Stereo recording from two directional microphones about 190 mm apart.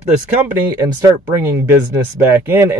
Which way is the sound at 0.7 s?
15° right (ahead or behind).